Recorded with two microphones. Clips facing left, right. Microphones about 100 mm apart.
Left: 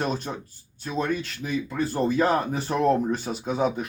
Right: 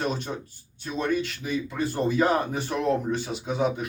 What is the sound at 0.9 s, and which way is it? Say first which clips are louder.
Speech: right 1 dB; 45° left (ahead or behind).